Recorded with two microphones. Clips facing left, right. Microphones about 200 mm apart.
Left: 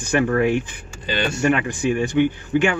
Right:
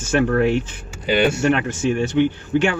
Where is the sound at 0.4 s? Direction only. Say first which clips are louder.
Right 1 dB; 15° left (ahead or behind).